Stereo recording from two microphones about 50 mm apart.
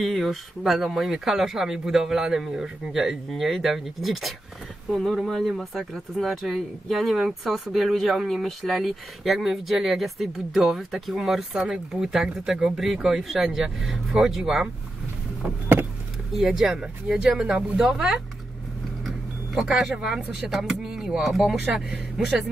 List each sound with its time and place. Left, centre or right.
0.0 s a man's voice: centre
16.4 s a man's voice: centre
19.5 s a man's voice: centre